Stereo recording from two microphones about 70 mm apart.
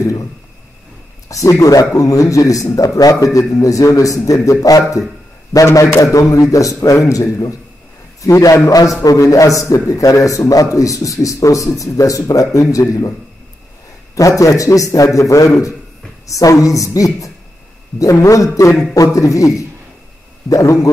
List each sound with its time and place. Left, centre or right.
0.0 s speech: left
1.3 s a man's voice: left
14.1 s a man's voice: left